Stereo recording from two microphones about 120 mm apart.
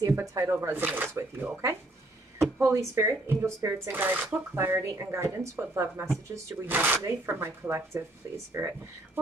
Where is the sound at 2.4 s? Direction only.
25° right (ahead or behind).